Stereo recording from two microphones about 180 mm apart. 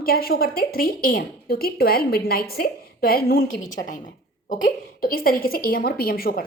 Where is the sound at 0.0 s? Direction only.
55° left (ahead or behind).